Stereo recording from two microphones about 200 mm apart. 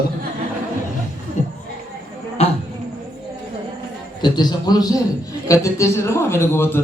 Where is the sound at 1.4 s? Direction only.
35° left (ahead or behind).